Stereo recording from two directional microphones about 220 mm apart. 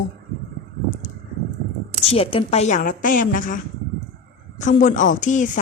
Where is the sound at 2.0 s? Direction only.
25° left (ahead or behind).